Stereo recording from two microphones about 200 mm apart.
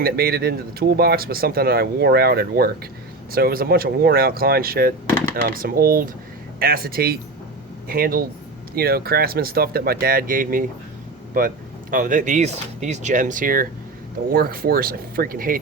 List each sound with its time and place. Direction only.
0.0 s speech: 50° right (ahead or behind)